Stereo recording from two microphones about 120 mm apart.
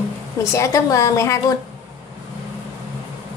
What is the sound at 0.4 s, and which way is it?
A woman's voice, 25° left (ahead or behind).